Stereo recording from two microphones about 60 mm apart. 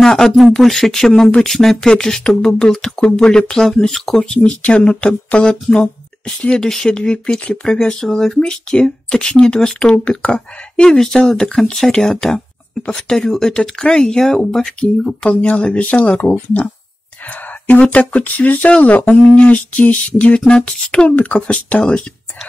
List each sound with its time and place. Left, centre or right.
0.0 s speech: centre
4.4 s speech: left
17.3 s a sound: left
17.7 s speech: left